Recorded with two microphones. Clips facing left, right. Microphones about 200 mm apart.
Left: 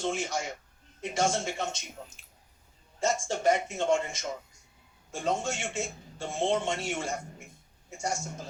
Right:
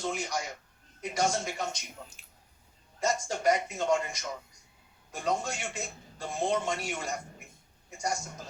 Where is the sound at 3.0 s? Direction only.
25° left (ahead or behind).